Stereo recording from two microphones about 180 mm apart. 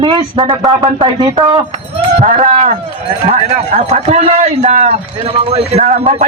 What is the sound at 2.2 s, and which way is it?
Speech, 45° right (ahead or behind).